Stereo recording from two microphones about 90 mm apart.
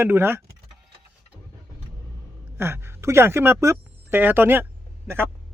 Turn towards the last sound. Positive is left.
turn(degrees=-25)  # may be behind; listen again after turning